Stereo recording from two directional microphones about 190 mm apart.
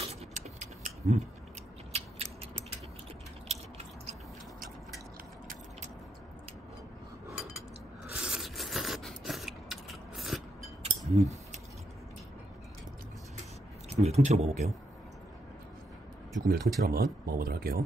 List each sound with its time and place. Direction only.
0.0 s a sound: 35° right (ahead or behind)
1.9 s scissors: 35° right (ahead or behind)
3.4 s a sound: 35° right (ahead or behind)
8.1 s scrape: 5° right (ahead or behind)
11.1 s speech: 40° right (ahead or behind)
14.0 s speech: 35° right (ahead or behind)
16.3 s speech: 45° right (ahead or behind)